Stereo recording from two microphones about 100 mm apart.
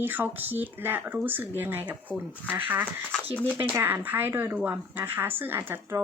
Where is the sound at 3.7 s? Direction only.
20° right (ahead or behind).